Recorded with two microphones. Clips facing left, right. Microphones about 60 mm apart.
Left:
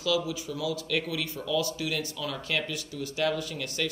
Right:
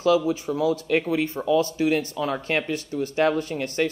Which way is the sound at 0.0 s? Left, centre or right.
Right.